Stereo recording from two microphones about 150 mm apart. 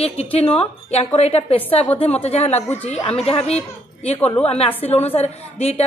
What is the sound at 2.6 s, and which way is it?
Speech, 15° left (ahead or behind).